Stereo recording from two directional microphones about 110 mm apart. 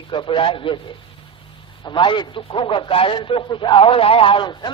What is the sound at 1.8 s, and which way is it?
Speech, 45° left (ahead or behind).